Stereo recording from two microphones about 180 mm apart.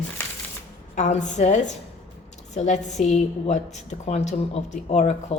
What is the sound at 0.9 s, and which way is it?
Speech, 40° left (ahead or behind).